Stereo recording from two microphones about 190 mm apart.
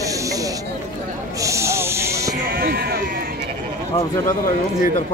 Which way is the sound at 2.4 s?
50° right (ahead or behind).